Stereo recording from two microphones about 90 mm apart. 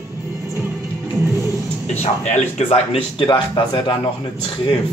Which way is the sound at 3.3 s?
70° left (ahead or behind).